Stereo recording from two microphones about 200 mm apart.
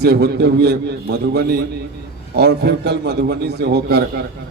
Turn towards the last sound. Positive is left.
turn(degrees=-55)  # may be behind; listen again after turning